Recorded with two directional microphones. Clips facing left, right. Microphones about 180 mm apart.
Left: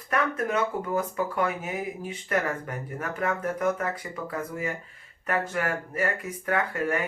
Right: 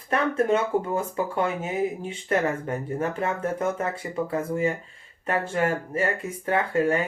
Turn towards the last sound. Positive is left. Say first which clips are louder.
# right 4 dB
turn(degrees=-25)  # may be behind; listen again after turning